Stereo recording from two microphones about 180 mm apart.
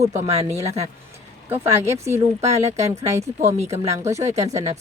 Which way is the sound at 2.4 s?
35° right (ahead or behind).